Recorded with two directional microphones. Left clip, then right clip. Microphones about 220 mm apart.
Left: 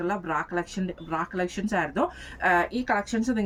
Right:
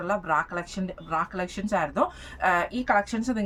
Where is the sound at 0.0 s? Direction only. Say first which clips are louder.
Right 3 dB; 15° right (ahead or behind).